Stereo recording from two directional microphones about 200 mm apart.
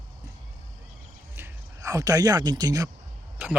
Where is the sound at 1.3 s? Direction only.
15° right (ahead or behind).